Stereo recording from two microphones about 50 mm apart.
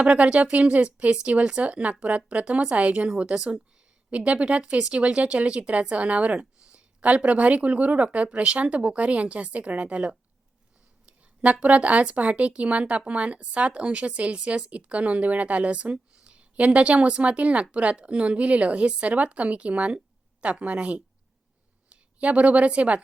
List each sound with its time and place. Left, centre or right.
0.0 s speech: right
11.0 s a sound: right
11.6 s a woman's voice: right